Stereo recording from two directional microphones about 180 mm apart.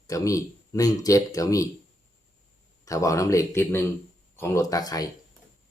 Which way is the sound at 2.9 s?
15° left (ahead or behind).